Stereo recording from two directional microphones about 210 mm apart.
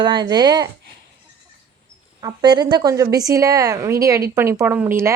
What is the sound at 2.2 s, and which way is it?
Speech, 20° right (ahead or behind).